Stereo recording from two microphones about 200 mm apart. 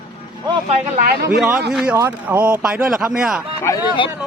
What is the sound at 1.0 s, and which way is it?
Speech, 50° right (ahead or behind).